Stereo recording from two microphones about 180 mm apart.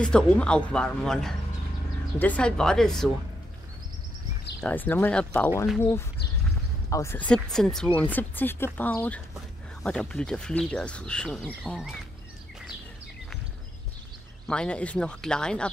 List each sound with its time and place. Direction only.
0.0 s speech: 5° left (ahead or behind)
4.6 s speech: 10° left (ahead or behind)
14.5 s speech: 5° left (ahead or behind)